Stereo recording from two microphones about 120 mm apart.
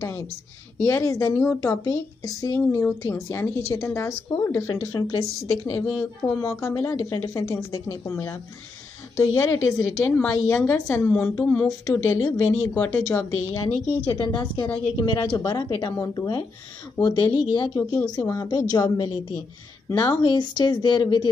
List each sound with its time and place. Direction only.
0.7 s a woman's voice: 25° left (ahead or behind)
5.9 s speech: 5° left (ahead or behind)
6.6 s a woman's voice: 25° left (ahead or behind)
14.0 s a woman's voice: 35° left (ahead or behind)